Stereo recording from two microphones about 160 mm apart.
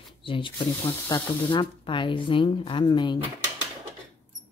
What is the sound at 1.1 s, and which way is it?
Speech, 25° left (ahead or behind).